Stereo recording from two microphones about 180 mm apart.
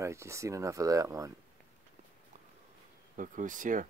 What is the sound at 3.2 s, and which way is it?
Speech, 45° right (ahead or behind).